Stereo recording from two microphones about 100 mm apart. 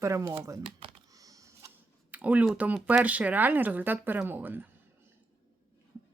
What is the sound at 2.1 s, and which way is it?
Speech, 15° right (ahead or behind).